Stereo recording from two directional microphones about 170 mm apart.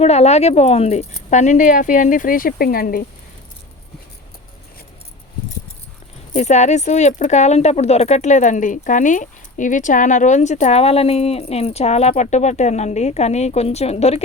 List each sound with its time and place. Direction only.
0.0 s speech: 40° left (ahead or behind); by 3.1 s 60° left (ahead or behind)
6.3 s speech: 45° left (ahead or behind)